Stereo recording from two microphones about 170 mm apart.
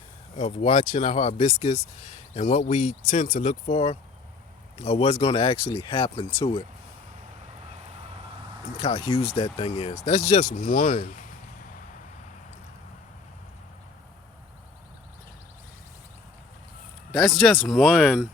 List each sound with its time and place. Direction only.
0.3 s speech: 45° left (ahead or behind)
8.8 s speech: 35° left (ahead or behind); by 11.2 s 50° left (ahead or behind)
17.1 s speech: centre (ahead or behind)